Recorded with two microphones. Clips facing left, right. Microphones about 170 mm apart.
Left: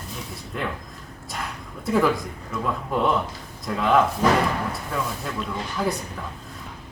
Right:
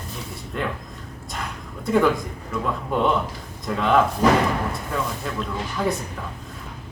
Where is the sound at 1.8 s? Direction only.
Centre (ahead or behind).